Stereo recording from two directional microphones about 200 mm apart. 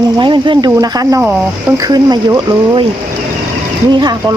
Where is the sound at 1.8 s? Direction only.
20° right (ahead or behind).